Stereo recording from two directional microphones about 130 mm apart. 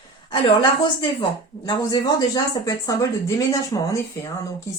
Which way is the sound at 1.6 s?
30° left (ahead or behind).